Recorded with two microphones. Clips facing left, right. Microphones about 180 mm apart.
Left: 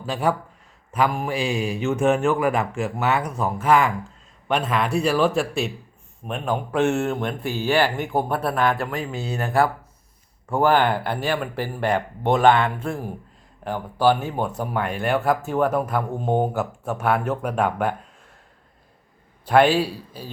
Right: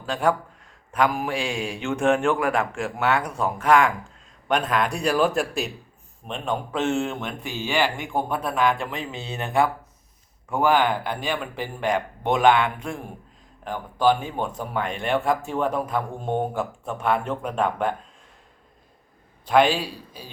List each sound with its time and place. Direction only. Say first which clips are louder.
0.0 s speech: even; 5° left (ahead or behind)
10.6 s speech: left 2 dB; 10° right (ahead or behind)
10.9 s speech: left 3 dB; 5° left (ahead or behind)
11.9 s speech: left 2 dB; 15° right (ahead or behind)
13.7 s speech: left 1 dB; 10° left (ahead or behind)
19.5 s speech: left 2 dB; 10° left (ahead or behind)